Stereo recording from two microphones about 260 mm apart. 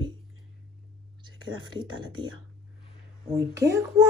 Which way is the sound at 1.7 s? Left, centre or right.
Centre.